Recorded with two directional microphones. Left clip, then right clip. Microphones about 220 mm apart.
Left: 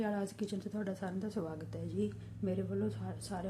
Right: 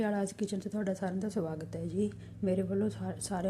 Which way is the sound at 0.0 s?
15° right (ahead or behind).